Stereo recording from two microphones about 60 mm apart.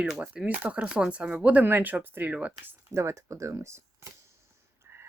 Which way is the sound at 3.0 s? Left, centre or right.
Right.